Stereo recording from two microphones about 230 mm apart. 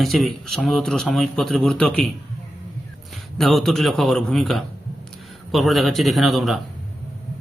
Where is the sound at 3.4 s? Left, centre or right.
Centre.